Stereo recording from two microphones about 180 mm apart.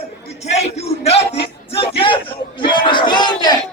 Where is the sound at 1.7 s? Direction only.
30° left (ahead or behind).